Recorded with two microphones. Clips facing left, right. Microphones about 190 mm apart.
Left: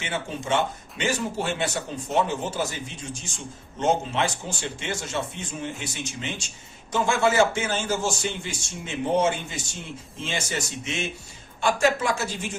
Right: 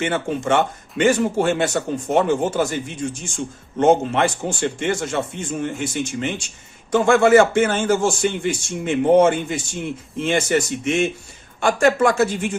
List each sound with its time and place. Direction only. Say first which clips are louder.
0.0 s speech: right 9 dB; 55° right (ahead or behind)